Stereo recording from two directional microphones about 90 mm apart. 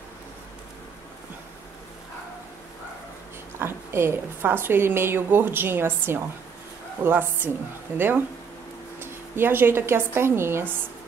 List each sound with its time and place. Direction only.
3.5 s a woman's voice: 30° right (ahead or behind)